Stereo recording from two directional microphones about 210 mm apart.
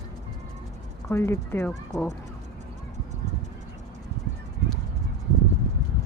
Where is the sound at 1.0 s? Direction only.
10° left (ahead or behind).